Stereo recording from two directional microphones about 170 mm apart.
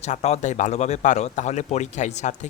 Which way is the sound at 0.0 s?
40° left (ahead or behind).